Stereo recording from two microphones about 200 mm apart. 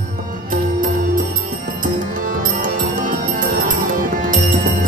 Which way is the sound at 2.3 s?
45° right (ahead or behind).